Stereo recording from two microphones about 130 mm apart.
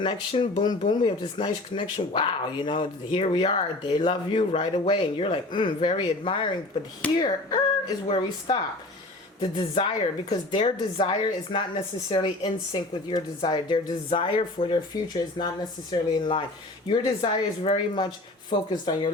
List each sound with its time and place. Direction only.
0.0 s speech: 40° left (ahead or behind)
15.9 s speech: 35° left (ahead or behind)